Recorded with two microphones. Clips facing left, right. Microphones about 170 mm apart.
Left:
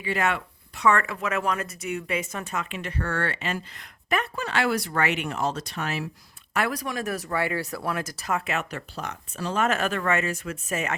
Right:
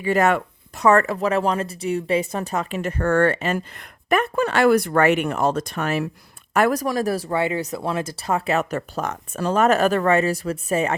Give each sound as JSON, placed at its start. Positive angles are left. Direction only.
{"t": 0.0, "sound": "speech", "side_deg": -45}